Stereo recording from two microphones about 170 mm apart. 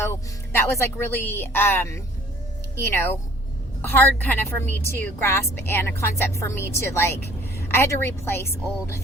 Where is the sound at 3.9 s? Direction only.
10° left (ahead or behind).